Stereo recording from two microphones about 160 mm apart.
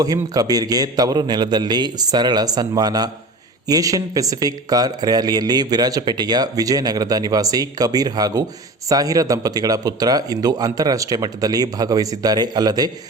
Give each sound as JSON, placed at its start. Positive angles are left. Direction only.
{"t": 0.0, "sound": "speech", "side_deg": -25}